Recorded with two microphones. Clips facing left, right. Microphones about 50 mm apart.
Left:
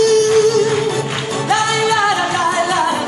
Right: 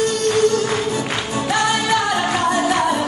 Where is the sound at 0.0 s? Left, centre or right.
Left.